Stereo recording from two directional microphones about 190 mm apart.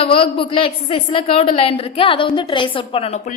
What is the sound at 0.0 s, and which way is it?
A woman's voice, 30° left (ahead or behind).